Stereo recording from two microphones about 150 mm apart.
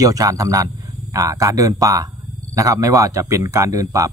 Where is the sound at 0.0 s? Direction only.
20° right (ahead or behind).